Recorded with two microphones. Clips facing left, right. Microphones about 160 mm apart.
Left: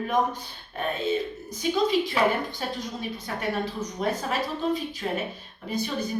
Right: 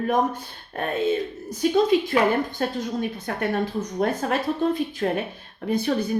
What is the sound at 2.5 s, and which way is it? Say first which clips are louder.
Speech: right 6 dB; 50° right (ahead or behind).